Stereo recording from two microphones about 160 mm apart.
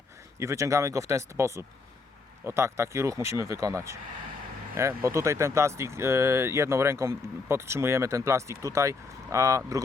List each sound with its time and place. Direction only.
0.3 s speech: 20° right (ahead or behind)